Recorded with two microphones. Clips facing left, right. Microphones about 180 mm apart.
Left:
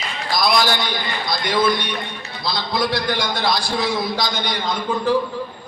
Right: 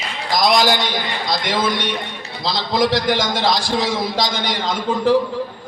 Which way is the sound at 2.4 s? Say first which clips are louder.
Right 4 dB; 90° right.